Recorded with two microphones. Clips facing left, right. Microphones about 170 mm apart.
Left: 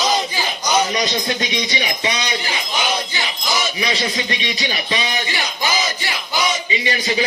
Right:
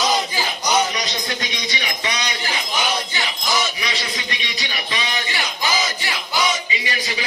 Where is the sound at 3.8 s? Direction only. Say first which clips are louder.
Left 6 dB; 20° left (ahead or behind).